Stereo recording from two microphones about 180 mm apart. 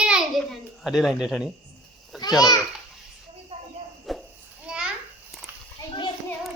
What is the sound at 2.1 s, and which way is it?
Children playing, centre (ahead or behind).